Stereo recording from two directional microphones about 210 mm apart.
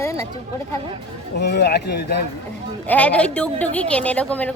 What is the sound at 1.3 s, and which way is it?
Speech, 55° left (ahead or behind).